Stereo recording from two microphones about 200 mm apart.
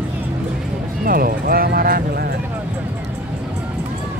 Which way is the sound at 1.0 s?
45° right (ahead or behind).